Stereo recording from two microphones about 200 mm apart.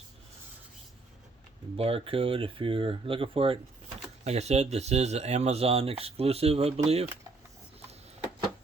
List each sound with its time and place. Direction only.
1.7 s speech: 30° right (ahead or behind)